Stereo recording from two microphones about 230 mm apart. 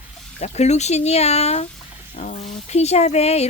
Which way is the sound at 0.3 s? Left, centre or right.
Left.